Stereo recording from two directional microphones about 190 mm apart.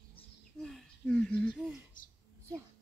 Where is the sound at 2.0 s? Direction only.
45° left (ahead or behind).